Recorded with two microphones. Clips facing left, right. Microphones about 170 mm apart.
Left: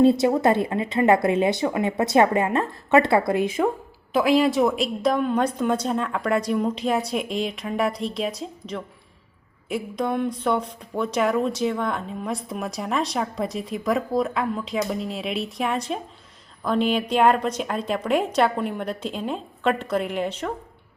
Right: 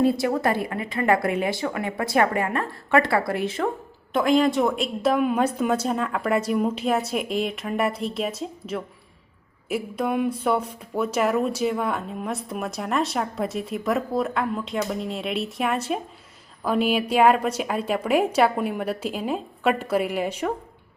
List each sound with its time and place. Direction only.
0.0 s a woman's voice: 25° left (ahead or behind)
4.1 s a woman's voice: 5° left (ahead or behind)